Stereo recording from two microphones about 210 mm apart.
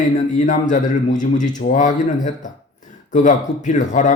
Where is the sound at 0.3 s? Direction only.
35° left (ahead or behind).